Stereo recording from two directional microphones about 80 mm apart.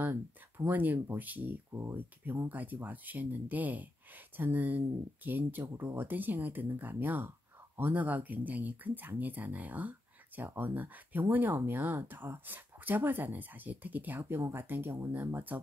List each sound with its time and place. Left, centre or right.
0.0 s speech: right
1.7 s speech: right
2.5 s speech: right